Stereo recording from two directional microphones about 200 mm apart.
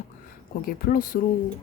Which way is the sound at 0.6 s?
45° left (ahead or behind).